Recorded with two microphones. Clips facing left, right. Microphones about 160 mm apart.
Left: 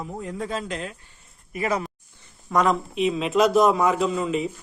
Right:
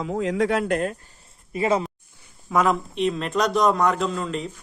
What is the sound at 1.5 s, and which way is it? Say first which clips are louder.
Speech: right 4 dB; 25° right (ahead or behind).